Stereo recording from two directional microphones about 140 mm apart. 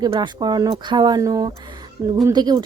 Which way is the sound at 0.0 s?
35° right (ahead or behind).